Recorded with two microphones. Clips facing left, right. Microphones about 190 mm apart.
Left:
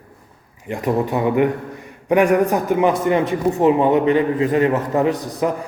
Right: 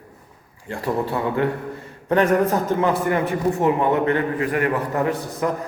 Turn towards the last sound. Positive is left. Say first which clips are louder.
# left 3 dB
turn(degrees=20)  # may be behind; listen again after turning